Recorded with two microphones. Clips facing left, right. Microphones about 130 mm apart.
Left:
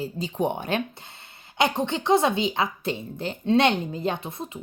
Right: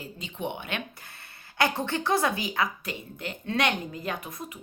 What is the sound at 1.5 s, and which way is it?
Speech, 20° left (ahead or behind).